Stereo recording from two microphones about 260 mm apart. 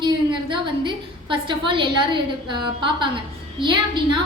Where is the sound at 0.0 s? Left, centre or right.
Centre.